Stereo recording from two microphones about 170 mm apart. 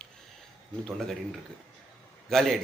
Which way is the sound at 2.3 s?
Centre (ahead or behind).